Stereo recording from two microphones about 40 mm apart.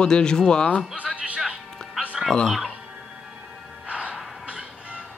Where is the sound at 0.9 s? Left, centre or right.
Right.